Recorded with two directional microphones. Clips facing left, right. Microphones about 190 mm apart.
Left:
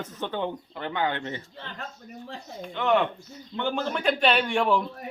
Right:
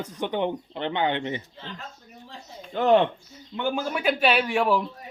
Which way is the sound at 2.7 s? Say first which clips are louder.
Right 4 dB; 35° right (ahead or behind).